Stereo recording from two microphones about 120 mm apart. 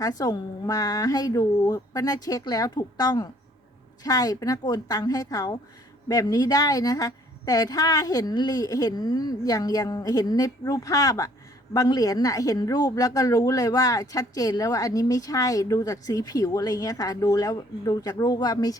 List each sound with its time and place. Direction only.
0.0 s a woman's voice: 30° left (ahead or behind)